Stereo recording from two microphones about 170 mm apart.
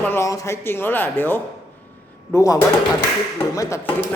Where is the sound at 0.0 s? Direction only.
15° left (ahead or behind).